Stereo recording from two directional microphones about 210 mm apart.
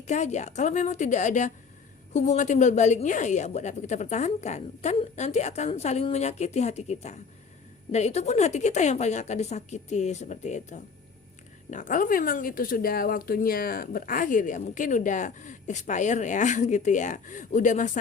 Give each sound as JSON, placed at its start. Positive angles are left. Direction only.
{"t": 0.1, "sound": "speech", "side_deg": 35}